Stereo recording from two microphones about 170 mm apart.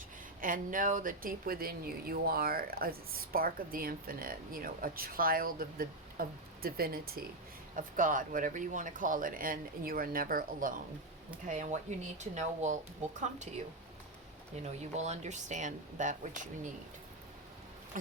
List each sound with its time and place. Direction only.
0.4 s speech: 55° right (ahead or behind)
14.6 s speech: 40° right (ahead or behind)